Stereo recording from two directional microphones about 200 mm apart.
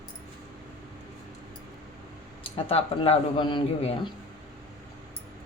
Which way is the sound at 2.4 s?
30° left (ahead or behind).